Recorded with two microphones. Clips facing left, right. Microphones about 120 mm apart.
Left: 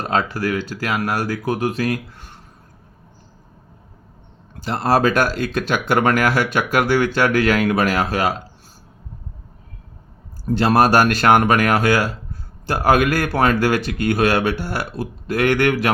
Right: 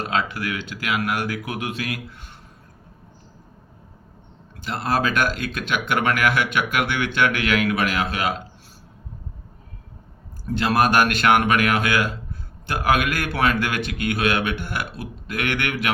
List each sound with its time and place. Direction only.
0.1 s speech: 40° left (ahead or behind)
4.6 s speech: 35° left (ahead or behind)
10.4 s speech: 40° left (ahead or behind)